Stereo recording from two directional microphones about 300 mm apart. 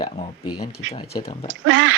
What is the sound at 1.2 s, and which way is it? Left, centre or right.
Speech, centre.